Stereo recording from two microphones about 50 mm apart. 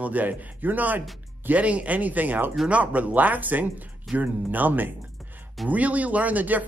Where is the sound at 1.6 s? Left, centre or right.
Right.